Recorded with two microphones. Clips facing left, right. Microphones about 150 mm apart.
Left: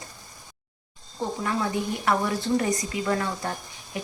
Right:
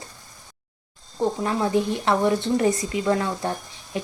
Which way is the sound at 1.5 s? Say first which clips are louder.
Right 3 dB; 25° right (ahead or behind).